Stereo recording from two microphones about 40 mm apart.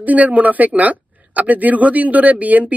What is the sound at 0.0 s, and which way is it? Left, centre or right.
A woman's voice, right.